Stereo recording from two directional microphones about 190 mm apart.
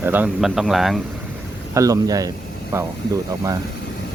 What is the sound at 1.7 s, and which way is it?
Speech, 15° right (ahead or behind).